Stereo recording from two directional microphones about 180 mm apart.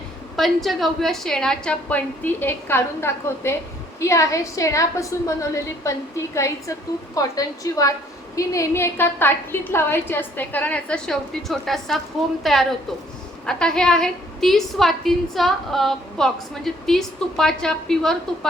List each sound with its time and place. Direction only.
0.3 s a woman's voice: centre (ahead or behind)